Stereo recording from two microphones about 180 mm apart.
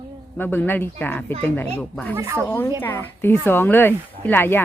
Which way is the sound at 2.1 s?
15° right (ahead or behind).